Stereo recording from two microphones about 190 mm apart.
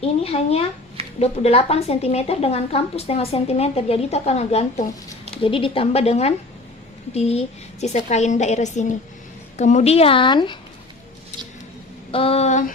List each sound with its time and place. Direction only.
0.0 s a woman's voice: 30° left (ahead or behind)
12.1 s a woman's voice: 30° left (ahead or behind)